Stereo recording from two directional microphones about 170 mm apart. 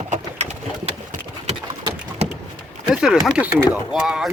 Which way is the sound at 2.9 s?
5° right (ahead or behind).